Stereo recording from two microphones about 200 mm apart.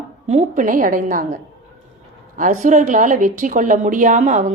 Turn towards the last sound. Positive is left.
turn(degrees=-40)  # may be behind; listen again after turning